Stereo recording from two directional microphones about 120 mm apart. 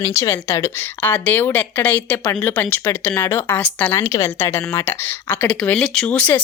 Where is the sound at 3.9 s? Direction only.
25° left (ahead or behind).